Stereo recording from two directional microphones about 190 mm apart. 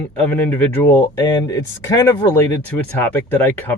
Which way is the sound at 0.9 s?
20° left (ahead or behind).